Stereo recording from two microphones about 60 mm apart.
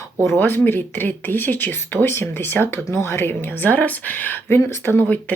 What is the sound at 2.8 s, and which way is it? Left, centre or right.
Speech, left.